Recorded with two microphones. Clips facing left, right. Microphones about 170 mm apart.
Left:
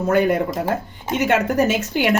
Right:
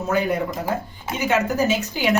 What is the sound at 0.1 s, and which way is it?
A woman's voice, 60° left (ahead or behind).